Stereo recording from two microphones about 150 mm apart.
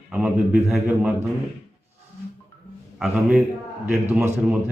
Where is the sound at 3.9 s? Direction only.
10° right (ahead or behind).